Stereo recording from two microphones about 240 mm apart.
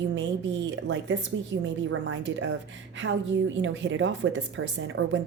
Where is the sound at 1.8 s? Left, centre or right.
Right.